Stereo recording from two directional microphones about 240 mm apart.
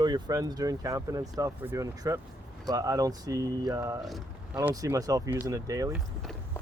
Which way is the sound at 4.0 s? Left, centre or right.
Centre.